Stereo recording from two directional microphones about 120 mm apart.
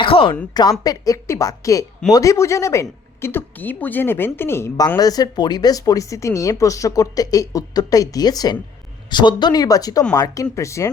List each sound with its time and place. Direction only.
0.0 s a woman's voice: 45° left (ahead or behind)
0.5 s speech: 35° left (ahead or behind)
4.9 s speech: 30° left (ahead or behind)